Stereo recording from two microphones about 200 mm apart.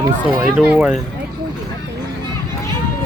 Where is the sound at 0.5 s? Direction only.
5° right (ahead or behind).